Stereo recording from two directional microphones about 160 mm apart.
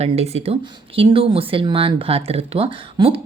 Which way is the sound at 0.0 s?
40° right (ahead or behind).